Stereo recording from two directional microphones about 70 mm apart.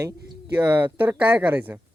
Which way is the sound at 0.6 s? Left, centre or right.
Right.